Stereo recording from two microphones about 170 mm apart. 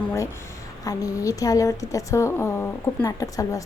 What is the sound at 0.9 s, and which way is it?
A woman's voice, 20° left (ahead or behind).